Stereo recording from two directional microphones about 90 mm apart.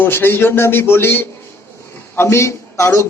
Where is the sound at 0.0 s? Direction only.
25° left (ahead or behind).